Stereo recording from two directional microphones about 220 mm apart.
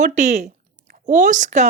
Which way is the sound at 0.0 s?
30° right (ahead or behind).